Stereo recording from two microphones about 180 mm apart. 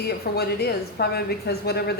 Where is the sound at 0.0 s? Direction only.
60° left (ahead or behind).